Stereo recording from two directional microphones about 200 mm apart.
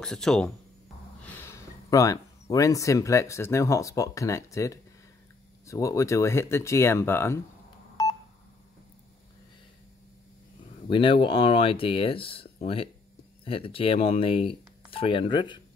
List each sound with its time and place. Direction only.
0.0 s speech: centre (ahead or behind)
1.2 s a sound: 10° left (ahead or behind)
2.5 s speech: 15° left (ahead or behind)
8.0 s telephone dialing: 15° left (ahead or behind)
10.9 s speech: 25° left (ahead or behind)